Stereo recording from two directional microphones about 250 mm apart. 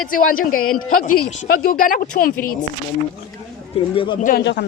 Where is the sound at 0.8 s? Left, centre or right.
Left.